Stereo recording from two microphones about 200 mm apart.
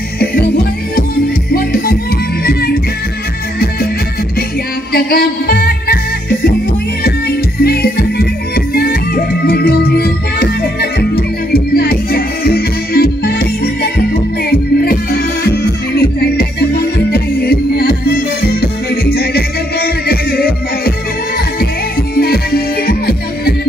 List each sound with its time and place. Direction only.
0.2 s music: 50° left (ahead or behind)
1.5 s music: 50° left (ahead or behind)
4.9 s music: 45° left (ahead or behind)
14.5 s music: 50° left (ahead or behind)
22.1 s music: 50° left (ahead or behind)